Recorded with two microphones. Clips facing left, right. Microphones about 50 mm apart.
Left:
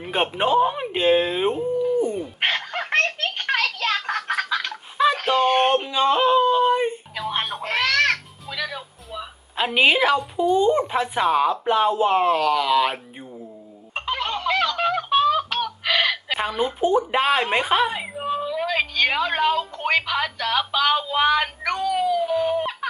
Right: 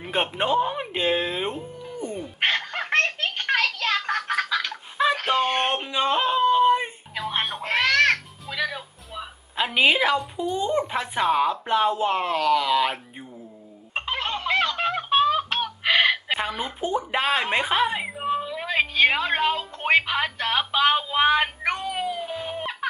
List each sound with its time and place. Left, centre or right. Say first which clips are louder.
0.0 s a sound: left 3 dB; centre
4.4 s fowl: left 1 dB; centre
4.7 s a sound: left 6 dB; centre
9.6 s speech: left 2 dB; centre
13.9 s music: left 2 dB; centre
16.5 s speech: left 6 dB; centre; by 22.2 s right
22.2 s crying: left 9 dB; centre